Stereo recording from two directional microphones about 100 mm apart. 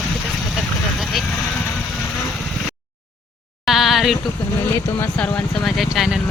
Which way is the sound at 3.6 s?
Centre (ahead or behind).